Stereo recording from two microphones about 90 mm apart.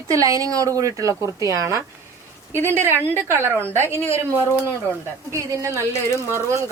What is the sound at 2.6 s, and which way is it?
A woman's voice, 25° right (ahead or behind).